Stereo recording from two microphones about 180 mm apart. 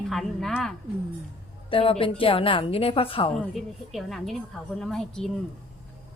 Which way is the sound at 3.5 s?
Centre (ahead or behind).